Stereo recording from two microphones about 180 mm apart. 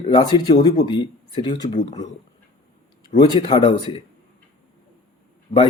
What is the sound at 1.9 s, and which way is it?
Speech, 40° left (ahead or behind).